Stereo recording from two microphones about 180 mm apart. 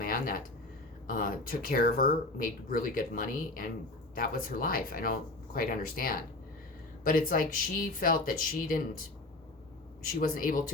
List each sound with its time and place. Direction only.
0.0 s a sound: 50° left (ahead or behind)
1.0 s speech: 50° left (ahead or behind)
10.2 s speech: 50° left (ahead or behind)